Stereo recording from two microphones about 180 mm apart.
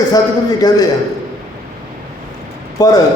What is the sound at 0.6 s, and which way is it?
Speech, 20° left (ahead or behind).